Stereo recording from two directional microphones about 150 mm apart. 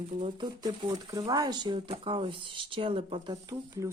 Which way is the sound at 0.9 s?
25° right (ahead or behind).